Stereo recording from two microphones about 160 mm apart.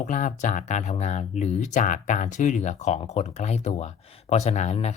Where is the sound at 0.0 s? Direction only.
50° left (ahead or behind).